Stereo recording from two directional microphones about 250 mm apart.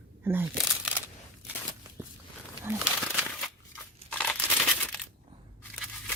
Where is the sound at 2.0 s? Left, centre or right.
Centre.